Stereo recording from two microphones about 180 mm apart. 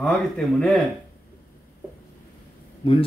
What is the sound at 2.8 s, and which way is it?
Speech, 30° left (ahead or behind).